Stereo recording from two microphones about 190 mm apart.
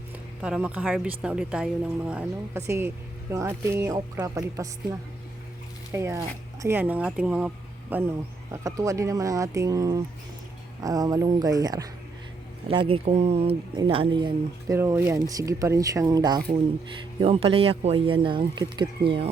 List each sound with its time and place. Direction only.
0.4 s a woman's voice: 5° right (ahead or behind); by 14.8 s 25° right (ahead or behind)
14.8 s a woman's voice: 15° right (ahead or behind)